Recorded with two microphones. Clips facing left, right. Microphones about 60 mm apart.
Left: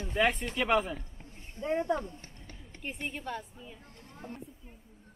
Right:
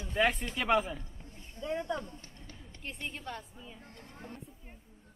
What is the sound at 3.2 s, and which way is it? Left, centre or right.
Speech, centre.